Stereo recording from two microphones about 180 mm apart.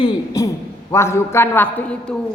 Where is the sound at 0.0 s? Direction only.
20° left (ahead or behind).